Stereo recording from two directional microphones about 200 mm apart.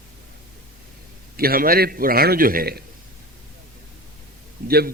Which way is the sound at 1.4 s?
45° right (ahead or behind).